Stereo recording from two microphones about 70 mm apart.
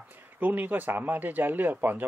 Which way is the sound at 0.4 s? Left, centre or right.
Right.